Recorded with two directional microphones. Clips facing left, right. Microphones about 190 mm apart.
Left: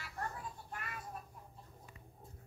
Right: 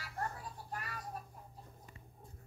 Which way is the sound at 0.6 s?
35° right (ahead or behind).